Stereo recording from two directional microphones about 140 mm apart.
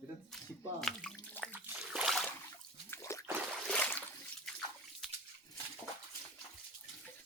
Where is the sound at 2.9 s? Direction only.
20° left (ahead or behind).